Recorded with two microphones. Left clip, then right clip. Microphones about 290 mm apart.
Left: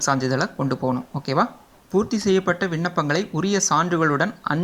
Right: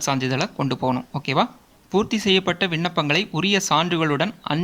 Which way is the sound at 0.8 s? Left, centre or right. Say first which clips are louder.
Right 1 dB; right.